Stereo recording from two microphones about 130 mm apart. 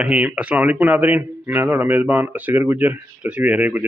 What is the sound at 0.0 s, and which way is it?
Speech, 10° right (ahead or behind).